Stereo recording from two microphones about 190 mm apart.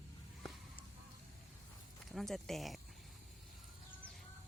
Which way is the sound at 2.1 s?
Centre (ahead or behind).